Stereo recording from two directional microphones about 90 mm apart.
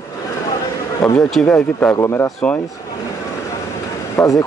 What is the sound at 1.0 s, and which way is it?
Speech, 5° left (ahead or behind).